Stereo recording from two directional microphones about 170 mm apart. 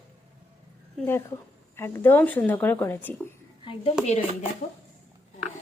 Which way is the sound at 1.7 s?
15° left (ahead or behind).